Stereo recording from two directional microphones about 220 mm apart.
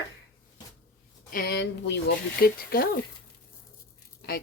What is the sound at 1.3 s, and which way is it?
Speech, 45° left (ahead or behind).